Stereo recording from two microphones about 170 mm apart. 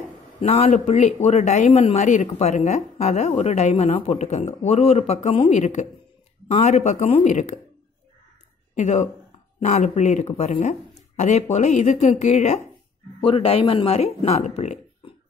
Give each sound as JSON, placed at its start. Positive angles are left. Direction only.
{"t": 0.4, "sound": "speech", "side_deg": 40}
{"t": 8.7, "sound": "speech", "side_deg": 45}
{"t": 13.2, "sound": "speech", "side_deg": 35}